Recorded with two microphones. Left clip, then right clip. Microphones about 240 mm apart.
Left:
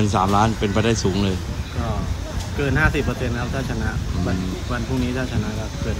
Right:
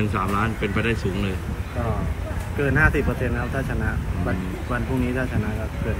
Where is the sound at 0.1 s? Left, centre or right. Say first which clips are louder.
Left 6 dB; centre.